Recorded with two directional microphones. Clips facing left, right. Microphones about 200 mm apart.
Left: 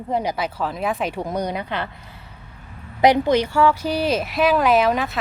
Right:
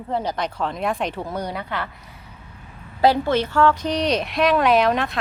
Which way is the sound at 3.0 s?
15° left (ahead or behind).